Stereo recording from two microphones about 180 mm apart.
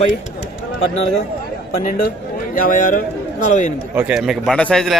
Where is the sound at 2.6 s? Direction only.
50° left (ahead or behind).